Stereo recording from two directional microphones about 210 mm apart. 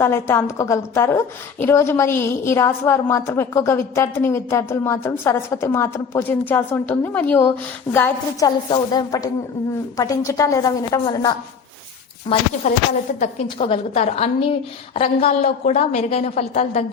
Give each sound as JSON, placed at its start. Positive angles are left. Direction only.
{"t": 0.0, "sound": "a woman's voice", "side_deg": 10}
{"t": 12.7, "sound": "a woman's voice", "side_deg": 35}